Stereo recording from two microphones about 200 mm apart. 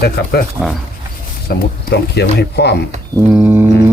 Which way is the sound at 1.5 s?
55° left (ahead or behind).